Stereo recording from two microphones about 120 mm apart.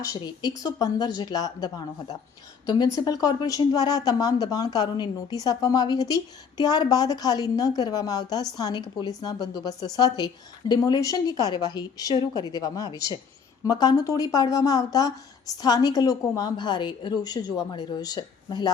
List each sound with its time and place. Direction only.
0.0 s a woman's voice: 30° left (ahead or behind)